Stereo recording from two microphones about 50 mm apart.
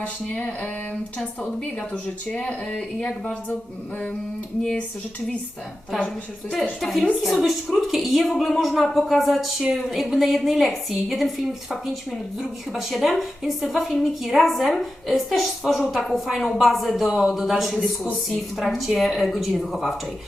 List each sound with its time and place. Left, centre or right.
0.0 s speech: left
1.9 s speech: left
7.3 s a woman's voice: centre